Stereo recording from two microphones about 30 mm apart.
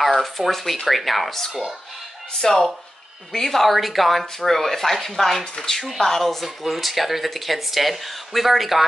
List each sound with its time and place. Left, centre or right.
0.2 s speech: centre
2.4 s speech: centre
6.0 s speech: centre